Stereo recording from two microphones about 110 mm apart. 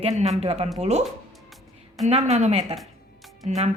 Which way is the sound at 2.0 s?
90° right.